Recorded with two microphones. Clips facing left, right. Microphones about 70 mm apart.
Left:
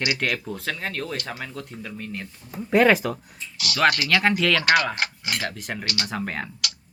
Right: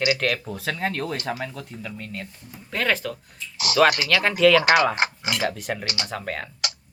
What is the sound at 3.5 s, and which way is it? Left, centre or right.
Speech, right.